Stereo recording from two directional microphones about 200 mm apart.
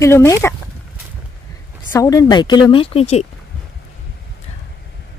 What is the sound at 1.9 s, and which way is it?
A woman's voice, 15° left (ahead or behind).